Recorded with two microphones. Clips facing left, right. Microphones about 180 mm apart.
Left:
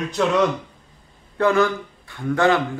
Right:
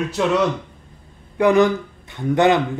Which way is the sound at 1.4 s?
15° right (ahead or behind).